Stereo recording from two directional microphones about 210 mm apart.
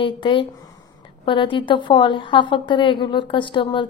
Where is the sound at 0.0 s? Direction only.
25° left (ahead or behind).